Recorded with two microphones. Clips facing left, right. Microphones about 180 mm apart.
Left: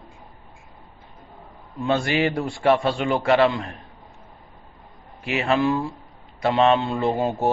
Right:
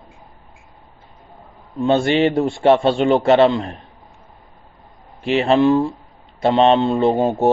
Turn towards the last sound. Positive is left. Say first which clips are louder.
# right 6 dB
turn(degrees=-25)  # may be behind; listen again after turning